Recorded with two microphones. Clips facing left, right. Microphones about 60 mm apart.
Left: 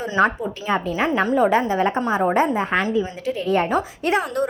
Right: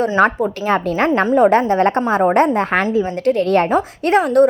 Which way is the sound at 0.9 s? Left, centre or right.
Right.